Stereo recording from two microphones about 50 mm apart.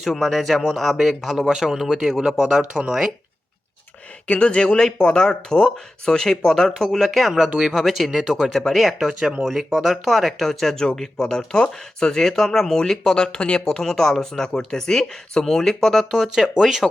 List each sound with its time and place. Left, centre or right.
0.0 s speech: centre
2.5 s speech: right
4.3 s speech: centre
16.3 s speech: centre